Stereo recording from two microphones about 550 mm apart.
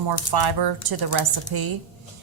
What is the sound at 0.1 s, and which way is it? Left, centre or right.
A woman's voice, right.